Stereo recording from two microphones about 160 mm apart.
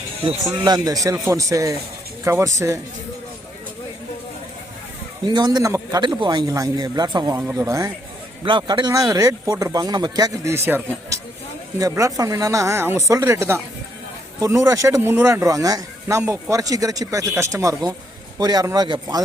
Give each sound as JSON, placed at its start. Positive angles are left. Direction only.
{"t": 0.6, "sound": "a man's voice", "side_deg": -25}
{"t": 5.2, "sound": "a man's voice", "side_deg": -25}
{"t": 7.4, "sound": "a man's voice", "side_deg": -15}